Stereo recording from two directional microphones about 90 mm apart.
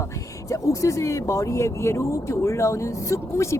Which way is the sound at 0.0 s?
35° left (ahead or behind).